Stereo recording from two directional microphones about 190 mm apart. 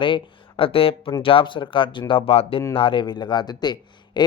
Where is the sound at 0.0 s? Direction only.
25° left (ahead or behind).